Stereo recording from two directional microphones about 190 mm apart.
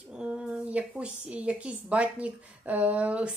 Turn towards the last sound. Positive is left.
turn(degrees=-5)  # may be behind; listen again after turning